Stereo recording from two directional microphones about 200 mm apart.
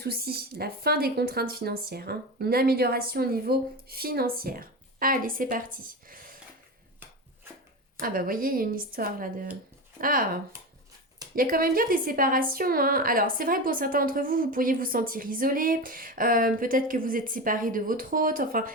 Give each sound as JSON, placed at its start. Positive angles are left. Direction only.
{"t": 0.0, "sound": "a woman's voice", "side_deg": -50}
{"t": 7.9, "sound": "a woman's voice", "side_deg": -45}